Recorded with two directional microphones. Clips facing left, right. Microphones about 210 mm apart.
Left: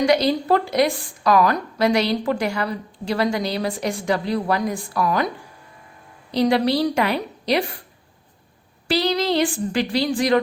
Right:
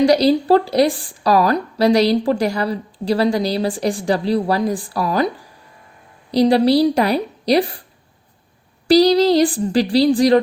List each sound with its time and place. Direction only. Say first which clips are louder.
0.0 s a woman's voice: right 5 dB; 35° right (ahead or behind)
6.3 s a woman's voice: right 5 dB; 35° right (ahead or behind)
8.9 s a woman's voice: right 9 dB; 35° right (ahead or behind)